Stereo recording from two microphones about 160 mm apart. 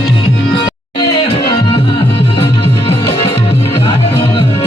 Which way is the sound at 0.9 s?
35° left (ahead or behind).